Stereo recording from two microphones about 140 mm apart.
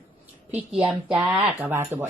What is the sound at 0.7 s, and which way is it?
A woman's voice, 5° right (ahead or behind).